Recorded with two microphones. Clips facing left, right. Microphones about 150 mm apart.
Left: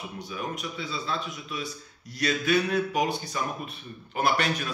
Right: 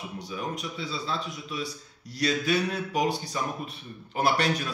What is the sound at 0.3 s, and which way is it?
A man's voice, 35° right (ahead or behind).